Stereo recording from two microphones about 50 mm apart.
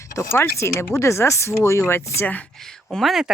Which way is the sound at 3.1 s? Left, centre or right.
Centre.